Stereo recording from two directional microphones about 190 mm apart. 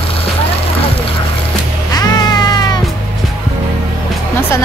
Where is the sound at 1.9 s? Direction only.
20° left (ahead or behind).